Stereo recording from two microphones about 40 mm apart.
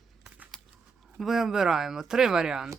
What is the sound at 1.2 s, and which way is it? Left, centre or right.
Speech, centre.